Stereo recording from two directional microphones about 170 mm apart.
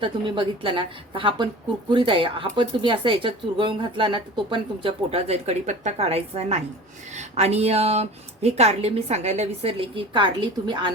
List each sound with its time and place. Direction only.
0.0 s a woman's voice: 30° right (ahead or behind)